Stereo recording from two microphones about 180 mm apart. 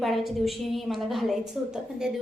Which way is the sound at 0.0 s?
Centre (ahead or behind).